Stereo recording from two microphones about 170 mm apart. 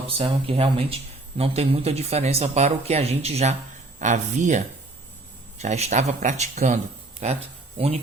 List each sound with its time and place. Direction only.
0.1 s speech: 30° right (ahead or behind)